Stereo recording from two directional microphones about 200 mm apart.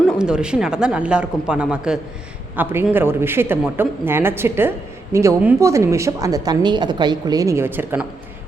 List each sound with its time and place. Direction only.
0.2 s a woman's voice: 5° right (ahead or behind)